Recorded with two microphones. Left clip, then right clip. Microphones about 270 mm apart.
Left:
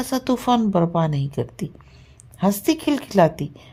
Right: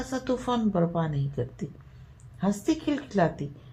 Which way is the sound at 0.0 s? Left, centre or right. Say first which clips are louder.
Left 7 dB; left.